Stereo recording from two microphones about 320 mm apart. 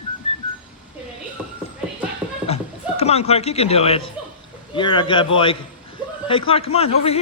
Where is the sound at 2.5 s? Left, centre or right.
Centre.